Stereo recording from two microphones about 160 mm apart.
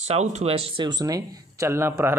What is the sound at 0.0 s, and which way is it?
Speech, 45° right (ahead or behind).